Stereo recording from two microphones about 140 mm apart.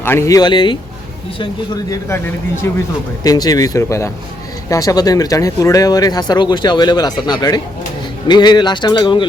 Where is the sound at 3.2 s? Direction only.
25° left (ahead or behind).